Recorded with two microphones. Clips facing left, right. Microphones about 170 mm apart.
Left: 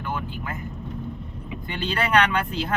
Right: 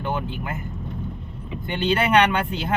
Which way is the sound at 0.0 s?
25° right (ahead or behind).